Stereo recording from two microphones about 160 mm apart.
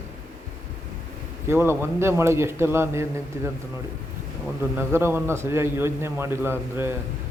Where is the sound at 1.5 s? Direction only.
15° right (ahead or behind).